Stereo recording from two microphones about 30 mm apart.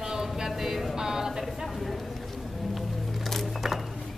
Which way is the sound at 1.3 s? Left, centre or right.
Centre.